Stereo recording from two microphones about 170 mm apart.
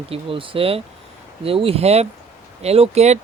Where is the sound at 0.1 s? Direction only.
30° right (ahead or behind).